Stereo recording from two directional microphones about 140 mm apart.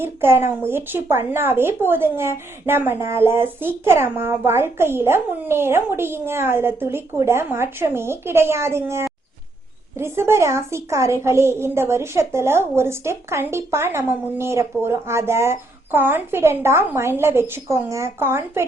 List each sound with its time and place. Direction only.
0.0 s a child's voice: 15° right (ahead or behind)